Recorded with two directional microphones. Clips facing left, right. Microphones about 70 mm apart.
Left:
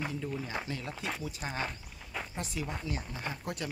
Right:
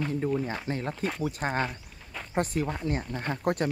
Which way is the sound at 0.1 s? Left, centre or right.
Right.